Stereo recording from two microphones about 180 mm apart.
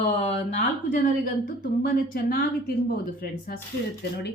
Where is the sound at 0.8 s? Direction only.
50° left (ahead or behind).